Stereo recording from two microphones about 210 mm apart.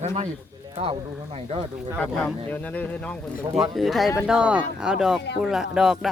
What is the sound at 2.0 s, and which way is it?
Speech, 5° left (ahead or behind).